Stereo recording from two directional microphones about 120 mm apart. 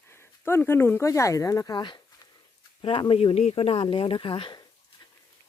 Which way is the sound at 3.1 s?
60° left (ahead or behind).